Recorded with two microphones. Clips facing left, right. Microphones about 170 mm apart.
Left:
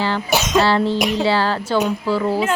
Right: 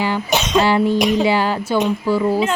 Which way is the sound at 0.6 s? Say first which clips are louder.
Right 2 dB; 15° right (ahead or behind).